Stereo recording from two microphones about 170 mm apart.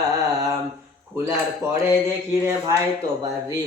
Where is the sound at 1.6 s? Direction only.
15° right (ahead or behind).